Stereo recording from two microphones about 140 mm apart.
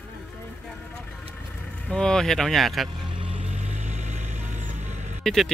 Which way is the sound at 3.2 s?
45° right (ahead or behind).